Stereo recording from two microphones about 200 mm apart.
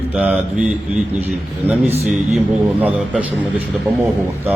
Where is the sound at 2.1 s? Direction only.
5° right (ahead or behind).